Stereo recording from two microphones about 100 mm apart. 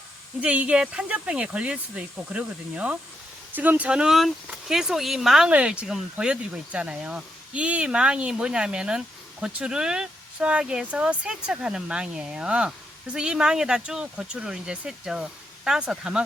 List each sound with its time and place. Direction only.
0.4 s speech: 15° right (ahead or behind)